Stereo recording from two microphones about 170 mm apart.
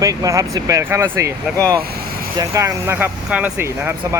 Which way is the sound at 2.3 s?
15° right (ahead or behind).